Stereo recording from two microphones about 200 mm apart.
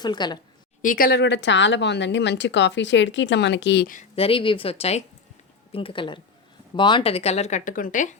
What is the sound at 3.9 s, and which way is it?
A woman's voice, 35° left (ahead or behind).